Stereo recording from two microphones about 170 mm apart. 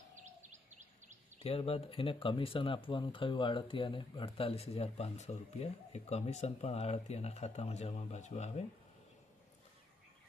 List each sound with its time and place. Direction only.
0.3 s bird vocalization: 45° right (ahead or behind)
1.4 s speech: 35° left (ahead or behind)